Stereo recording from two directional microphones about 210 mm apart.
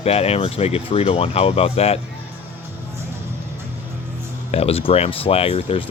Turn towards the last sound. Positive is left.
turn(degrees=25)  # may be behind; listen again after turning